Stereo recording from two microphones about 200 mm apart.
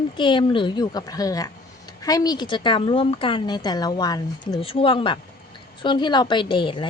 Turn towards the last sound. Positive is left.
turn(degrees=25)  # may be behind; listen again after turning